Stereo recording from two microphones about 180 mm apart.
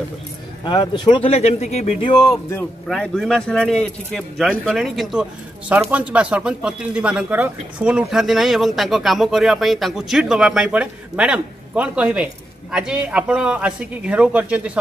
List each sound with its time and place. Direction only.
0.7 s speech: 25° left (ahead or behind)
2.9 s speech: centre (ahead or behind)